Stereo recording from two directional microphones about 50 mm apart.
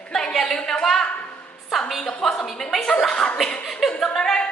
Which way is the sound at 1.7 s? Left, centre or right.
Centre.